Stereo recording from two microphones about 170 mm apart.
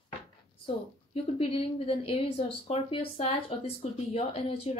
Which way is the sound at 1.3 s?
35° left (ahead or behind).